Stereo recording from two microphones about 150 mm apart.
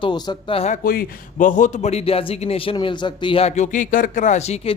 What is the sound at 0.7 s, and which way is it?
A man's voice, 65° left (ahead or behind).